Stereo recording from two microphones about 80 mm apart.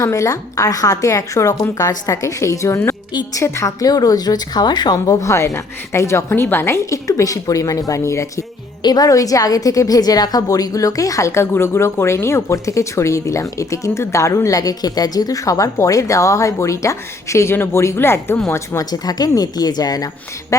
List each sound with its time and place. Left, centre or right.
0.0 s a woman's voice: left
8.8 s a woman's voice: left
18.8 s a woman's voice: left
20.5 s a woman's voice: left